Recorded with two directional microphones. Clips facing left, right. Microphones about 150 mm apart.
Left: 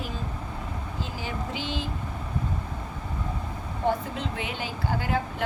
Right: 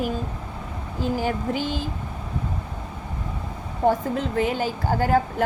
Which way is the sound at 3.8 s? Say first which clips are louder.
Right 6 dB; 40° right (ahead or behind).